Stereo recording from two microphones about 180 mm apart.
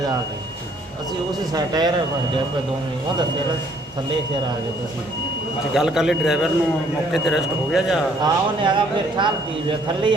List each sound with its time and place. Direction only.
1.5 s a man's voice: 25° right (ahead or behind)
5.7 s speech: centre (ahead or behind)
8.2 s a man's voice: 25° right (ahead or behind)